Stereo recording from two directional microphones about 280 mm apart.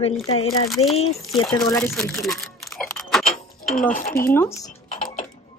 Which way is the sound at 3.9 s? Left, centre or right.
Left.